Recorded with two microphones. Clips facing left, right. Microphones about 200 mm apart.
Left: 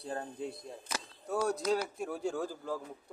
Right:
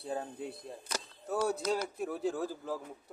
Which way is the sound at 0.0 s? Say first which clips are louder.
Right 1 dB; 5° right (ahead or behind).